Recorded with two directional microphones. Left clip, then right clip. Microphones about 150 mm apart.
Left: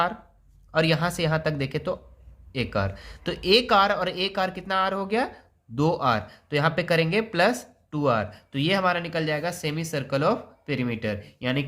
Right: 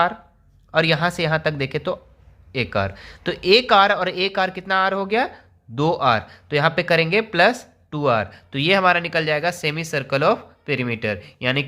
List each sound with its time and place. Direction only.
0.7 s speech: 25° right (ahead or behind)